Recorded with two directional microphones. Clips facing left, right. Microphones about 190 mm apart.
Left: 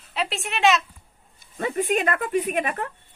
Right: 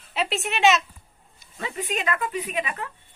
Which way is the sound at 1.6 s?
50° left (ahead or behind).